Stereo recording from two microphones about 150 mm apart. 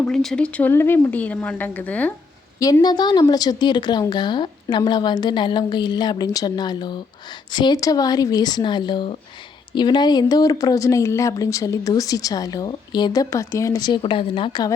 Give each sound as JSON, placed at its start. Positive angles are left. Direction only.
{"t": 0.1, "sound": "speech", "side_deg": 5}
{"t": 2.8, "sound": "speech", "side_deg": 30}